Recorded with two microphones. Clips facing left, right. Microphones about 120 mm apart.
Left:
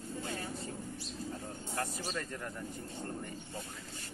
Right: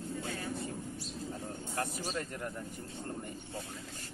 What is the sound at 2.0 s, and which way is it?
Speech, 15° right (ahead or behind).